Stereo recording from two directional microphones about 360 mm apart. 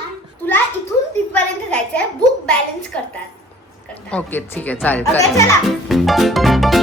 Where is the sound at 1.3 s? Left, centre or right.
Centre.